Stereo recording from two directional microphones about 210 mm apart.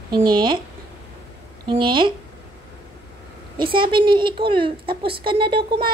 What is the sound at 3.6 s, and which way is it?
A woman's voice, 25° right (ahead or behind).